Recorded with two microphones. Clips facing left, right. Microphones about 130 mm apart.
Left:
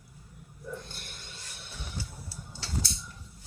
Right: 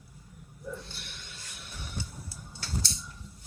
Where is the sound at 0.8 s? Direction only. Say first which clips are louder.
Even; 50° left (ahead or behind).